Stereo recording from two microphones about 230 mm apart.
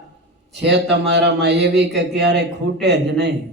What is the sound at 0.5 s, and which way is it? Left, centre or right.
A man's voice, right.